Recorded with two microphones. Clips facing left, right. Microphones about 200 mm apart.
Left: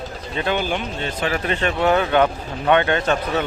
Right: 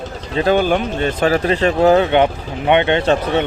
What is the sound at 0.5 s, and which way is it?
Speech, 50° right (ahead or behind).